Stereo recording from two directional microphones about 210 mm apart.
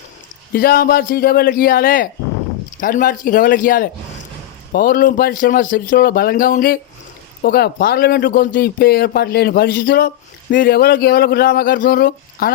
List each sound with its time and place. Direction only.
0.5 s speech: 45° left (ahead or behind)